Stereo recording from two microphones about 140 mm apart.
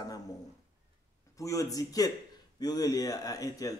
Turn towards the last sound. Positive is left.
turn(degrees=25)  # may be behind; listen again after turning